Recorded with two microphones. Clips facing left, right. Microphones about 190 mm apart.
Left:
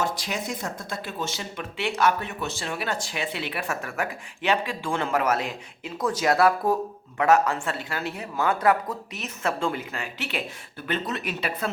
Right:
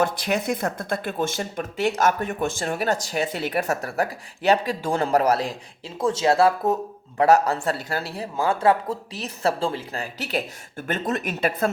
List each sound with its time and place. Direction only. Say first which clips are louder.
0.0 s speech: right 6 dB; 60° right (ahead or behind); by 6.7 s 25° right (ahead or behind)
7.2 s speech: right 3 dB; 35° right (ahead or behind)